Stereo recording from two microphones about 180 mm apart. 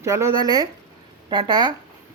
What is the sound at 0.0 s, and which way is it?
Speech, 15° right (ahead or behind).